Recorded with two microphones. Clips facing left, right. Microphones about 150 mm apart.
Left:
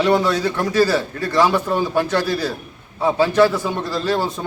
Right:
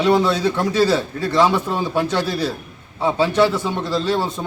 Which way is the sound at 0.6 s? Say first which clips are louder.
Left 1 dB; 25° right (ahead or behind).